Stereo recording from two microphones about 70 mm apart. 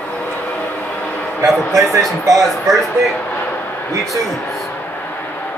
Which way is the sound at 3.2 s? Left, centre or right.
Left.